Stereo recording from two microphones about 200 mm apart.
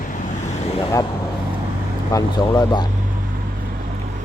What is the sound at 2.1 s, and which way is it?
Speech, 20° left (ahead or behind).